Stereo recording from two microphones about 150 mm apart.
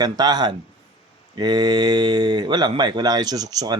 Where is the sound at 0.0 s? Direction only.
25° right (ahead or behind).